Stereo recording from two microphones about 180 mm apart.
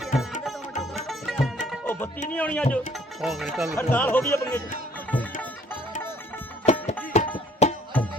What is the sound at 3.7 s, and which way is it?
Speech, 10° left (ahead or behind).